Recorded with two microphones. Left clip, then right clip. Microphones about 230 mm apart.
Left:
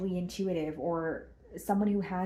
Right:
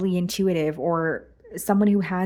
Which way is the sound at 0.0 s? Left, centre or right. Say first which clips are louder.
Right 10 dB; right.